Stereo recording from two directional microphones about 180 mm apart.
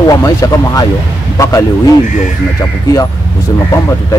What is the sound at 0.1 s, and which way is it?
Speech, 15° left (ahead or behind).